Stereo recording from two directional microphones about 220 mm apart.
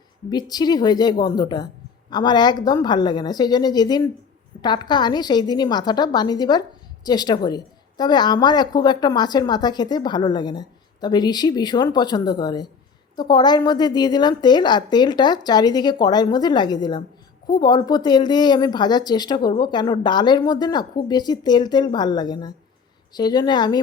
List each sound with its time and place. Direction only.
0.3 s a woman's voice: 20° left (ahead or behind)